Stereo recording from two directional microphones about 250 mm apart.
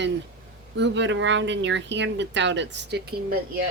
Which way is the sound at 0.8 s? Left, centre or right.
Right.